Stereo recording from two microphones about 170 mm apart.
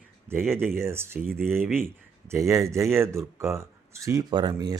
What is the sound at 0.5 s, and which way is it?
A man's voice, 15° right (ahead or behind).